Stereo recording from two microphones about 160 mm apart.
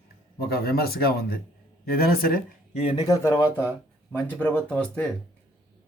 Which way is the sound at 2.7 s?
45° left (ahead or behind).